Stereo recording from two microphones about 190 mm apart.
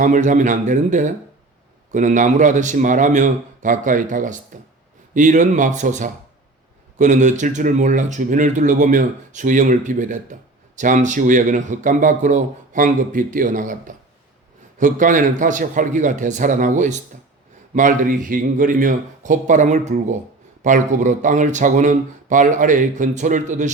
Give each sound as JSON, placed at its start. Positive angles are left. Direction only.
{"t": 0.0, "sound": "speech", "side_deg": -40}